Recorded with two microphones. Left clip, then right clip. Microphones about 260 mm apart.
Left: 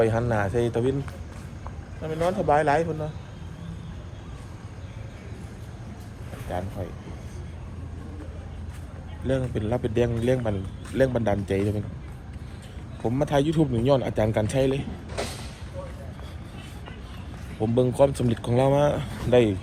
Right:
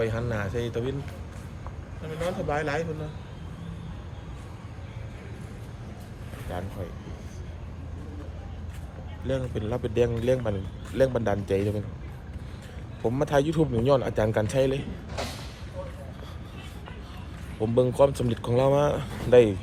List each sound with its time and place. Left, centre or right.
0.0 s a man's voice: centre
2.0 s a man's voice: centre
6.5 s speech: centre
9.2 s a man's voice: centre
13.1 s a man's voice: right
17.6 s a man's voice: centre